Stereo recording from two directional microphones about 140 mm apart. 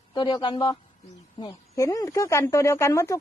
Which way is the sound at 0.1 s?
35° left (ahead or behind).